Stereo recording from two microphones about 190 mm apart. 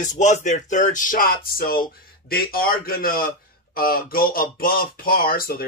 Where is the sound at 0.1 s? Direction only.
40° left (ahead or behind).